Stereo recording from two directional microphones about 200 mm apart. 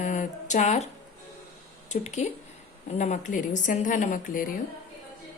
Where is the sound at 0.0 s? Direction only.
40° left (ahead or behind).